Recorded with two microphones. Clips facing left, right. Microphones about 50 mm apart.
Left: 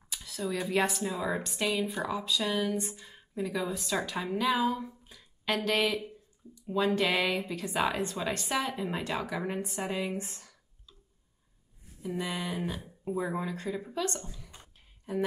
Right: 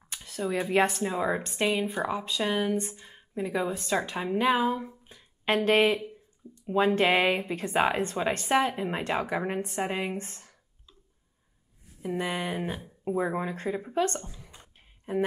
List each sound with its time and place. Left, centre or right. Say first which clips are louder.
0.1 s a woman's voice: right 4 dB; right
12.0 s a woman's voice: right 4 dB; right
14.6 s a sound: right 1 dB; right